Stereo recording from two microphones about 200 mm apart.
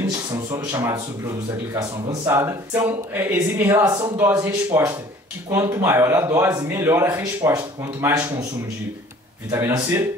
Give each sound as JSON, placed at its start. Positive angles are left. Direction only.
{"t": 0.0, "sound": "a man's voice", "side_deg": -20}
{"t": 9.5, "sound": "speech", "side_deg": -15}